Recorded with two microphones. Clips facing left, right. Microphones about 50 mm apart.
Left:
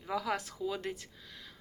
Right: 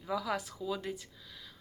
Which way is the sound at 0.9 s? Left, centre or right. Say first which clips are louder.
Right 1 dB; left.